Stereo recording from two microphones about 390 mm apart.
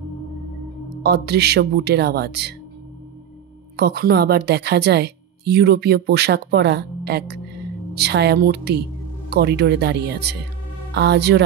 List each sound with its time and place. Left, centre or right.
1.0 s a woman's voice: right
3.7 s a woman's voice: right